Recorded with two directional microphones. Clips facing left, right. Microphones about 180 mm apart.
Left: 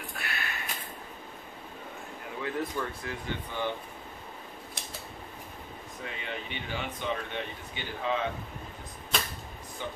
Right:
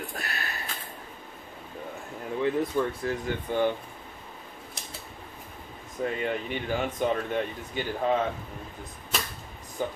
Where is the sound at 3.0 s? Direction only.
50° right (ahead or behind).